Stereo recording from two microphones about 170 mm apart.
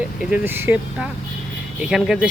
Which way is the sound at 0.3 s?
10° right (ahead or behind).